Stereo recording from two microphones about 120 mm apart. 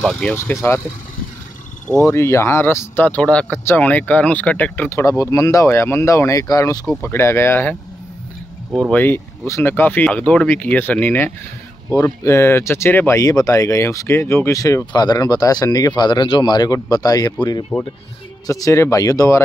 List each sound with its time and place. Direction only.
0.0 s speech: 10° left (ahead or behind)
0.4 s speech: 20° left (ahead or behind)
1.9 s speech: 25° left (ahead or behind)
8.9 s speech: 15° left (ahead or behind)